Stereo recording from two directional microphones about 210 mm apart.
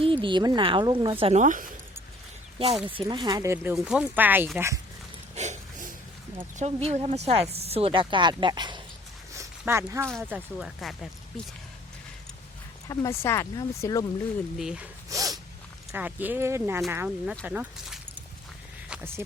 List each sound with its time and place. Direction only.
0.0 s a woman's voice: 25° right (ahead or behind)
2.8 s speech: 25° right (ahead or behind)
5.3 s a sound: 35° right (ahead or behind)
6.6 s a woman's voice: 30° right (ahead or behind)
9.3 s a sound: 15° right (ahead or behind)
10.2 s speech: 5° right (ahead or behind)
12.9 s speech: 15° left (ahead or behind)
14.6 s speech: centre (ahead or behind)
15.1 s snort: 15° right (ahead or behind)
15.9 s speech: 5° right (ahead or behind)